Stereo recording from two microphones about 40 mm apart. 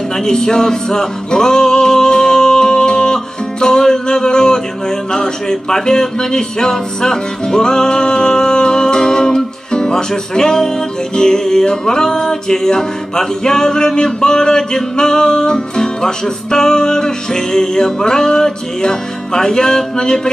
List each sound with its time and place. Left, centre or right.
0.2 s music: centre
5.1 s speech: centre
11.1 s music: centre